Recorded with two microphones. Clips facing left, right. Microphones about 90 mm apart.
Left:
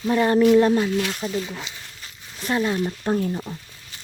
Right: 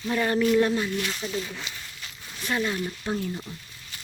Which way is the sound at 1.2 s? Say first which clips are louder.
Left 4 dB; 25° left (ahead or behind).